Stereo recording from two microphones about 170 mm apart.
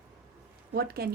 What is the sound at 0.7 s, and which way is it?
Speech, 65° right (ahead or behind).